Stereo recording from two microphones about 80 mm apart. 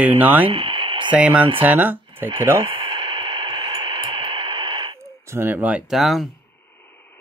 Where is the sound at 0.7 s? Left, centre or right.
Right.